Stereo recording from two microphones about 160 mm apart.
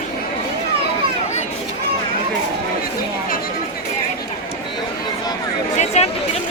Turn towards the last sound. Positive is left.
turn(degrees=45)  # may be behind; listen again after turning